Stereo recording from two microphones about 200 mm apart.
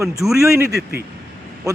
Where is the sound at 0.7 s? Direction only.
55° right (ahead or behind).